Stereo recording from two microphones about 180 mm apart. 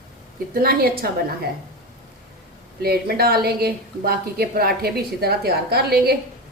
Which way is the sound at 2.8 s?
60° right (ahead or behind).